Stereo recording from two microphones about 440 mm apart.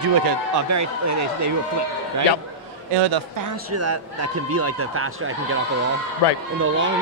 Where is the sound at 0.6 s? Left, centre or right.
Right.